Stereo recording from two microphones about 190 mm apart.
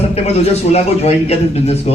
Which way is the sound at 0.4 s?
35° left (ahead or behind).